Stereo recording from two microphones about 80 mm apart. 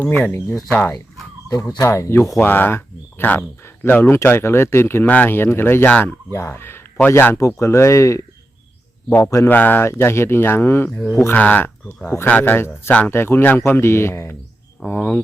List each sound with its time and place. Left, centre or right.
0.1 s speech: left
1.5 s speech: left
1.8 s speech: left
5.0 s speech: left
7.3 s speech: left
14.8 s speech: centre